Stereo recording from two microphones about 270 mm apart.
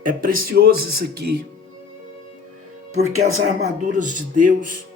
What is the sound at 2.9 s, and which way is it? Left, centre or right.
Speech, right.